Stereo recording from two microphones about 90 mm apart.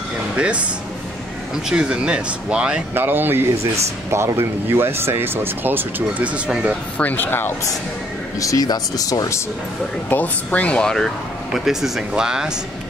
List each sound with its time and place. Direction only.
1.7 s speech: 10° right (ahead or behind)
2.9 s speech: 25° right (ahead or behind)
7.0 s speech: 20° left (ahead or behind)
8.4 s speech: 40° left (ahead or behind)
10.0 s speech: 20° left (ahead or behind)
11.5 s speech: 5° right (ahead or behind)